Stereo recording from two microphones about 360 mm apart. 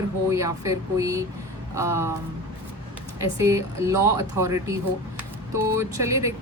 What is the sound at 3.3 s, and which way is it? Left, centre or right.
Speech, centre.